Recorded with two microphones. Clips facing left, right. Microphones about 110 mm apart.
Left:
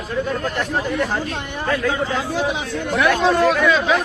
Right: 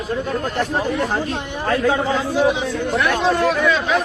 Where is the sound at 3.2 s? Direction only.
Centre (ahead or behind).